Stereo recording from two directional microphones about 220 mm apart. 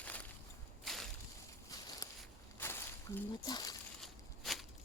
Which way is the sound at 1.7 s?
15° left (ahead or behind).